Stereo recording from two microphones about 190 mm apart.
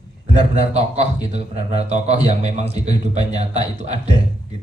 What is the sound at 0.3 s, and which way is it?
A man's voice, 35° right (ahead or behind).